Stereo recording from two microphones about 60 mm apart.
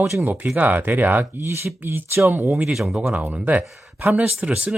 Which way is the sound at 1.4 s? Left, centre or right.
Right.